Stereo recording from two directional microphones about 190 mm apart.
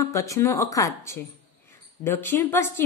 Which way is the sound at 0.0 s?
15° left (ahead or behind).